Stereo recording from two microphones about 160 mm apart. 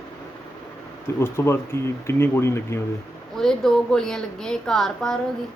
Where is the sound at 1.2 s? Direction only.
15° left (ahead or behind).